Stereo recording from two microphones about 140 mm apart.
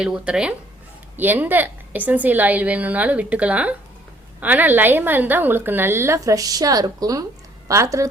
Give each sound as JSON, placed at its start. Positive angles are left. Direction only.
{"t": 0.0, "sound": "a woman's voice", "side_deg": -5}